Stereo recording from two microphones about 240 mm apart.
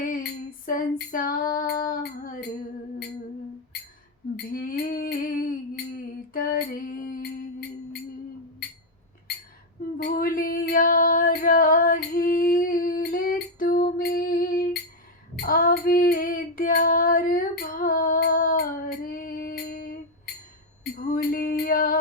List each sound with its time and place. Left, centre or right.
0.1 s female singing: left
1.9 s music: left
4.5 s music: left
10.0 s female singing: left
21.0 s music: left